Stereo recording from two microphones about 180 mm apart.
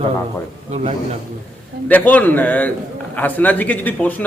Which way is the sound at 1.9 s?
10° left (ahead or behind).